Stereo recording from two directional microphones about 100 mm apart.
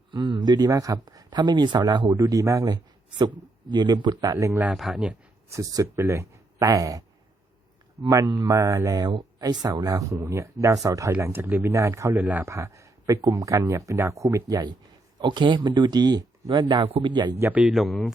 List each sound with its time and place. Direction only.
0.1 s speech: 50° right (ahead or behind)
2.1 s speech: 35° right (ahead or behind)
4.5 s a man's voice: 15° right (ahead or behind)
5.5 s speech: 35° right (ahead or behind)
8.1 s speech: 35° right (ahead or behind)
12.1 s a man's voice: 15° right (ahead or behind)
12.5 s speech: 30° right (ahead or behind)
15.2 s speech: 50° right (ahead or behind)
17.6 s speech: centre (ahead or behind)